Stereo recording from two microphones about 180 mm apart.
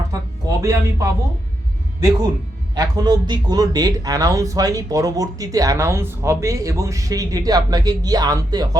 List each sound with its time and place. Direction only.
0.1 s speech: 20° right (ahead or behind)
2.7 s speech: 20° right (ahead or behind)